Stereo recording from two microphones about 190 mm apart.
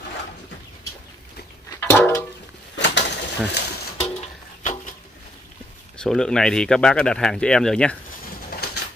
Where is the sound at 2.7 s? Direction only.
70° left (ahead or behind).